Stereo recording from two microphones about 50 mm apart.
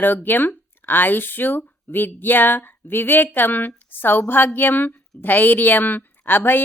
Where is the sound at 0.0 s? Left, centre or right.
Left.